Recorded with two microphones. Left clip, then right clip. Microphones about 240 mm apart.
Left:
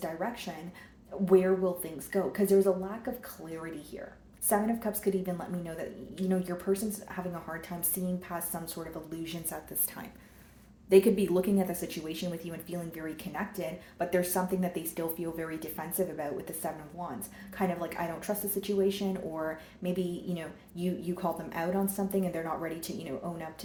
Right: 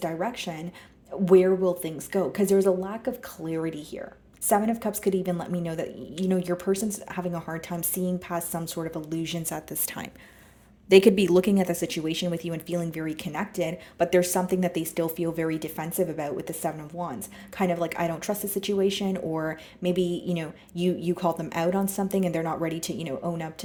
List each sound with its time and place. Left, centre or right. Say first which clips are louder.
0.0 s speech: right 6 dB; right
4.4 s speech: right 6 dB; right